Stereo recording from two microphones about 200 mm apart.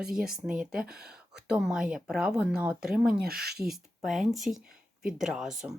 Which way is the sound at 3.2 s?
50° right (ahead or behind).